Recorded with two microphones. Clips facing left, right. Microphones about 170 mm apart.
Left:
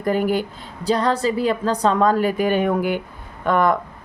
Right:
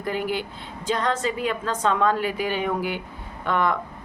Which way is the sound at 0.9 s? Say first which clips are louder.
Left 5 dB; 35° left (ahead or behind).